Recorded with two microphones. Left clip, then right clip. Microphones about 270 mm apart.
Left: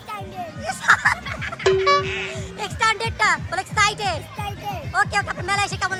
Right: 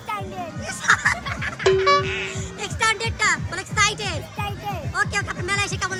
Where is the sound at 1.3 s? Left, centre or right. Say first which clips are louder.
Right 1 dB; right.